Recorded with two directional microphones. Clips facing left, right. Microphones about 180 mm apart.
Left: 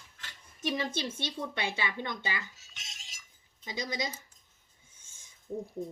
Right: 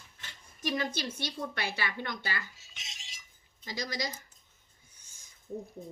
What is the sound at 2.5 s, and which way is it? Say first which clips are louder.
Cutlery: right 1 dB; centre (ahead or behind).